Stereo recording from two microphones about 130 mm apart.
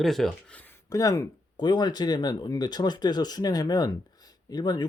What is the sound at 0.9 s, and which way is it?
Speech, 25° left (ahead or behind).